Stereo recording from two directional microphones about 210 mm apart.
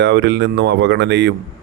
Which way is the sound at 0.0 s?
55° right (ahead or behind).